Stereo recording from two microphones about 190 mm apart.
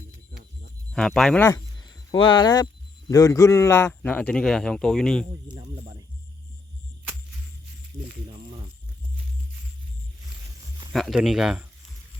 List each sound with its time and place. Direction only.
0.9 s speech: 5° left (ahead or behind)
1.5 s a man's voice: 20° left (ahead or behind)
5.3 s speech: 20° right (ahead or behind)
8.3 s speech: 25° right (ahead or behind)
10.9 s speech: centre (ahead or behind)